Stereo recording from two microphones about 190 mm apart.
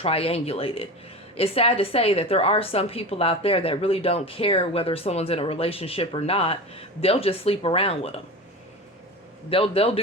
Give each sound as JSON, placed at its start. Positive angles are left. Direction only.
{"t": 0.0, "sound": "a woman's voice", "side_deg": 30}
{"t": 9.5, "sound": "a man's voice", "side_deg": 30}